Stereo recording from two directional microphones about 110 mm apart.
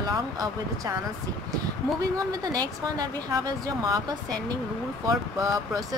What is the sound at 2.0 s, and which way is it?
Speech, 35° right (ahead or behind).